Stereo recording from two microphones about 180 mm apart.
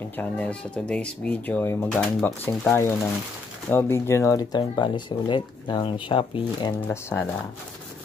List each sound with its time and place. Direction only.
0.1 s speech: 10° left (ahead or behind); by 6.7 s 30° left (ahead or behind)
6.9 s speech: 15° left (ahead or behind)